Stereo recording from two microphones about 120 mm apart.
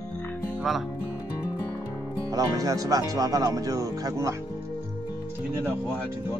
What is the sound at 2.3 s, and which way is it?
Speech, 30° right (ahead or behind).